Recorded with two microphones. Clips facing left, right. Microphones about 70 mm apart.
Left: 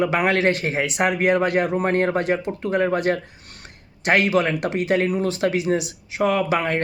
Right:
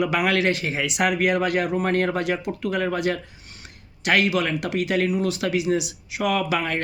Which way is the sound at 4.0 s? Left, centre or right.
Left.